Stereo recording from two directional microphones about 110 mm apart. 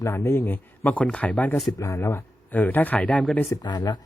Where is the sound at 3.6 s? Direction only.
40° left (ahead or behind).